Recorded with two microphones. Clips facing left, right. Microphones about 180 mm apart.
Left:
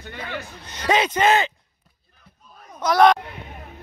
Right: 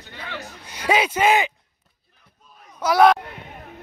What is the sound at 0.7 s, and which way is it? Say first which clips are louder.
Speech: even; 10° right (ahead or behind).